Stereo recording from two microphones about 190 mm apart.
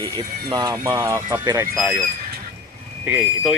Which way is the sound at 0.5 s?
20° right (ahead or behind).